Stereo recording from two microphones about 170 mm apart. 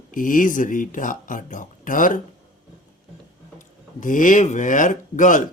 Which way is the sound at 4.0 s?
50° left (ahead or behind).